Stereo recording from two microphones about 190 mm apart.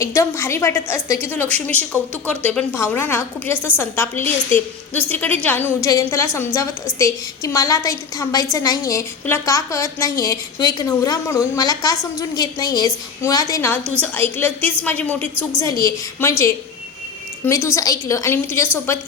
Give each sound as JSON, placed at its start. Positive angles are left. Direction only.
{"t": 0.0, "sound": "a woman's voice", "side_deg": 15}
{"t": 17.4, "sound": "a woman's voice", "side_deg": 15}